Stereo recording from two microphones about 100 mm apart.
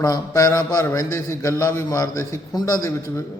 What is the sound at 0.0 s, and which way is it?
A man's voice, 35° left (ahead or behind).